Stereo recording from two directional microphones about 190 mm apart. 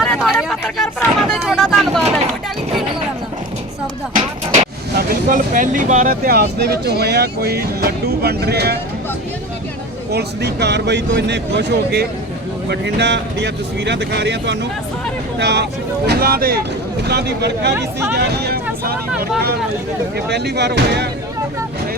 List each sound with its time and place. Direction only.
0.0 s speech: centre (ahead or behind)
4.1 s music: 40° right (ahead or behind)
4.9 s speech: 45° right (ahead or behind)
10.1 s speech: 60° right (ahead or behind)
16.0 s speech: 55° right (ahead or behind)
20.1 s speech: 60° right (ahead or behind)